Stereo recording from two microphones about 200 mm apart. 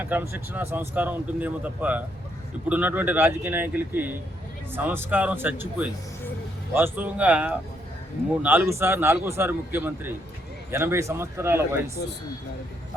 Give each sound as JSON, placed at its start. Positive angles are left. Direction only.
{"t": 0.0, "sound": "speech", "side_deg": -10}
{"t": 12.0, "sound": "speech", "side_deg": 55}